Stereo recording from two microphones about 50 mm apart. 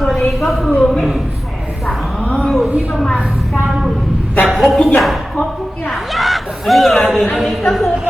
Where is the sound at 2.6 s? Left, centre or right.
Right.